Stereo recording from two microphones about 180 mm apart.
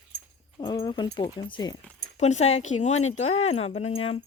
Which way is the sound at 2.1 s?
40° left (ahead or behind).